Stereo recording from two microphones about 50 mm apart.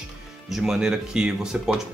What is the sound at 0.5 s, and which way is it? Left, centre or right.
Speech, centre.